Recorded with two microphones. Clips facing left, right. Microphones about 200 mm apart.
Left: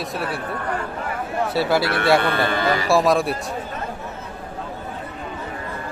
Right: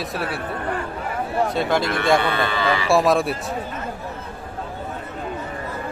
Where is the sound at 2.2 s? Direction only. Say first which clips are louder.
Left 1 dB; 50° left (ahead or behind).